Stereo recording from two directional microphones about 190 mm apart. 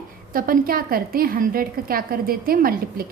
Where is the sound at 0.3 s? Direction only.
50° right (ahead or behind).